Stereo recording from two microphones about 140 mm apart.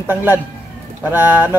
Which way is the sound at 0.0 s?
15° right (ahead or behind).